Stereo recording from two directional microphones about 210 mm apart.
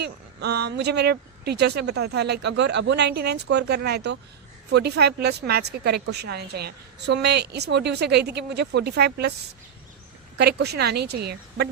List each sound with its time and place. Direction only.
0.0 s a woman's voice: 50° right (ahead or behind)
10.3 s a woman's voice: 50° right (ahead or behind)